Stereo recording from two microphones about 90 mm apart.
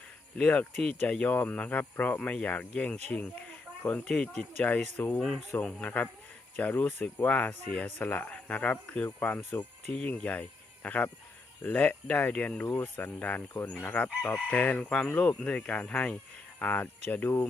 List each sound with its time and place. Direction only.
0.3 s speech: 15° left (ahead or behind)